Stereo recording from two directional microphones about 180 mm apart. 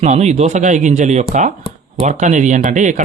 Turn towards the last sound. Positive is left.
turn(degrees=-45)  # may be behind; listen again after turning